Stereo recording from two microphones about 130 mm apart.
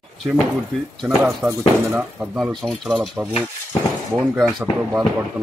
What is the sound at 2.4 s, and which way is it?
Speech, centre (ahead or behind).